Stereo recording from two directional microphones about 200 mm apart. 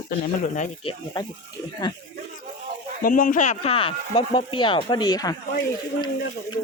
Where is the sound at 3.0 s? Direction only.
45° left (ahead or behind); by 5.3 s 20° left (ahead or behind).